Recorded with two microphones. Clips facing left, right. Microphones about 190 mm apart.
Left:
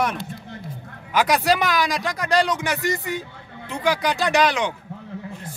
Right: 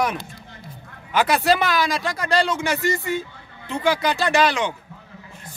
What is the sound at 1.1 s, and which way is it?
Speech, 10° left (ahead or behind).